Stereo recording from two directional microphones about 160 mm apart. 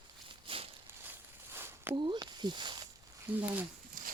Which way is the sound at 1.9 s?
30° right (ahead or behind).